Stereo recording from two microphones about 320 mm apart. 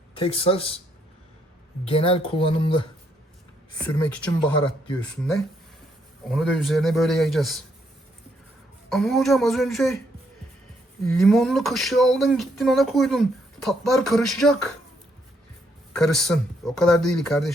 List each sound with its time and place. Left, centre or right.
0.2 s speech: centre
1.8 s speech: centre
4.1 s speech: centre
6.3 s speech: centre
8.9 s speech: centre
11.1 s speech: centre
15.9 s speech: centre